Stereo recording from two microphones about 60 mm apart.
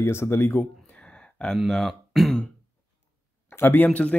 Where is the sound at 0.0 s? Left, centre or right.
Left.